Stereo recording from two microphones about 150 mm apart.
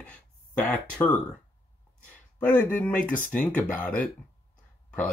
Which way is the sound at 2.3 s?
10° left (ahead or behind).